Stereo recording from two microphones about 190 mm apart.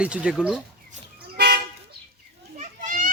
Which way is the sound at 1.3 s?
55° right (ahead or behind).